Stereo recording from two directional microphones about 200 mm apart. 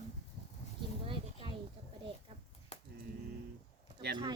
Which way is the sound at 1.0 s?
25° right (ahead or behind).